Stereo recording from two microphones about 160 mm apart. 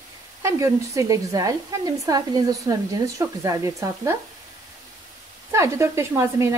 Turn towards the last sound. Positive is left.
turn(degrees=-20)  # may be behind; listen again after turning